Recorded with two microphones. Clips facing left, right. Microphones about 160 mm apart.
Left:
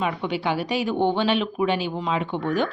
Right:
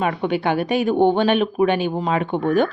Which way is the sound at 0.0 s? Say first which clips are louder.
Right 5 dB; 55° right (ahead or behind).